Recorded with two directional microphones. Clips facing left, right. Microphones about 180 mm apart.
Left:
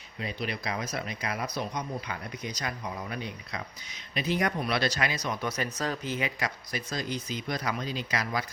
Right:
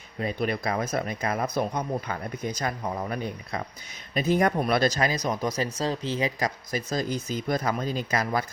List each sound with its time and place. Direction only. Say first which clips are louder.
0.2 s speech: right 7 dB; 45° right (ahead or behind)